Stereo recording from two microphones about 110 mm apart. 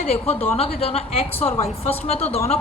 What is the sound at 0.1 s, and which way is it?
Speech, 65° left (ahead or behind).